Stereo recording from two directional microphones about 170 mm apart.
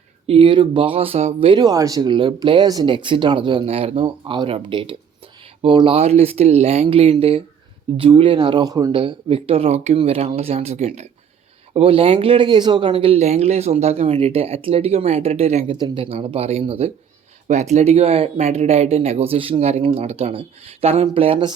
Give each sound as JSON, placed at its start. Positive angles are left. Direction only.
{"t": 0.3, "sound": "speech", "side_deg": -30}
{"t": 9.0, "sound": "speech", "side_deg": -30}